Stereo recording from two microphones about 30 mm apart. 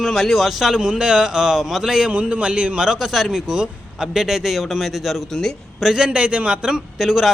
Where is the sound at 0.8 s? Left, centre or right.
Right.